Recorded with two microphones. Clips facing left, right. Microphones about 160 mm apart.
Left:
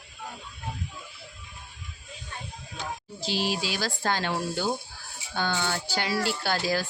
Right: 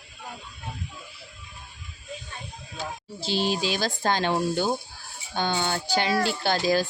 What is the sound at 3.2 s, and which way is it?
Speech, 25° right (ahead or behind).